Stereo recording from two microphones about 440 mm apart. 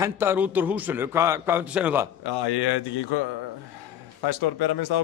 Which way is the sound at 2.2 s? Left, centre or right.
Left.